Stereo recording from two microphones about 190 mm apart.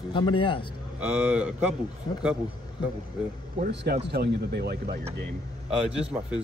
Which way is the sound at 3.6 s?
60° right (ahead or behind).